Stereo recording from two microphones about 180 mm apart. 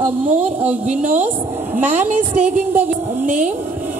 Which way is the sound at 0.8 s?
45° right (ahead or behind).